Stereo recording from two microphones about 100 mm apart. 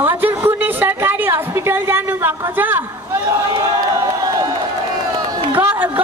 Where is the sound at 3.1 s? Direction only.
45° right (ahead or behind).